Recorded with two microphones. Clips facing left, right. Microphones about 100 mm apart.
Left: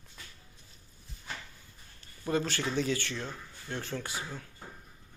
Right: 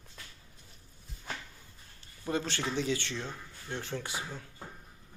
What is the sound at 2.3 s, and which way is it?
Speech, 20° right (ahead or behind).